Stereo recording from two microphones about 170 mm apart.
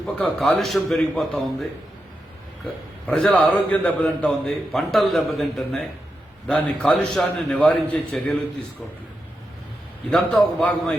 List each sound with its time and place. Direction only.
0.0 s a man's voice: centre (ahead or behind)
3.1 s a man's voice: 5° left (ahead or behind)
6.8 s a man's voice: 5° left (ahead or behind)
10.1 s a man's voice: 5° left (ahead or behind)